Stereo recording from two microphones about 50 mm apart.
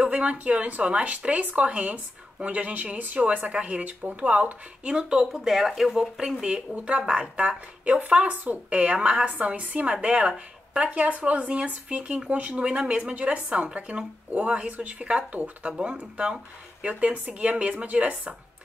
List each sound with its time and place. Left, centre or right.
0.0 s speech: right
6.7 s speech: right
10.0 s speech: centre
12.5 s speech: centre
15.7 s speech: centre